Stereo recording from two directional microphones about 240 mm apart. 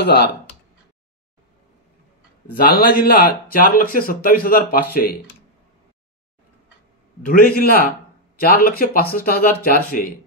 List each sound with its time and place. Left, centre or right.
0.0 s speech: left
2.5 s speech: left
7.2 s speech: left